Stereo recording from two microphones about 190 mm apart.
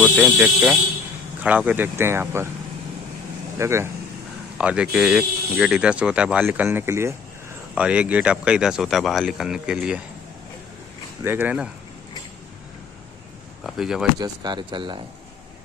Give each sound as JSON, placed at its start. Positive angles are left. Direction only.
{"t": 0.2, "sound": "speech", "side_deg": -5}
{"t": 3.5, "sound": "speech", "side_deg": -15}
{"t": 11.2, "sound": "speech", "side_deg": -10}
{"t": 13.7, "sound": "speech", "side_deg": -5}
{"t": 14.2, "sound": "speech", "side_deg": -20}